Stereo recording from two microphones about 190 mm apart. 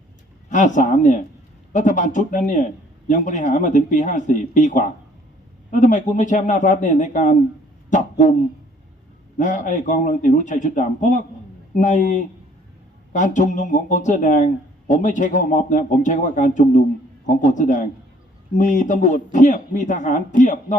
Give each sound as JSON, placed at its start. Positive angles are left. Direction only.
{"t": 0.5, "sound": "speech", "side_deg": 40}
{"t": 9.4, "sound": "speech", "side_deg": 40}